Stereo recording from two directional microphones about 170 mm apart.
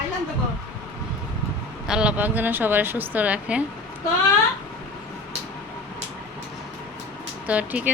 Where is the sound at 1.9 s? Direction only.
5° right (ahead or behind).